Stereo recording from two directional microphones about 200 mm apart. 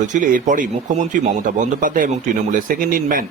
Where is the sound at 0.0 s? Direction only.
40° right (ahead or behind).